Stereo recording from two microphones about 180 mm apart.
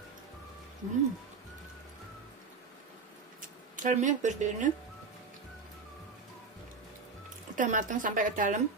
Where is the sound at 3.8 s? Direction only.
45° right (ahead or behind).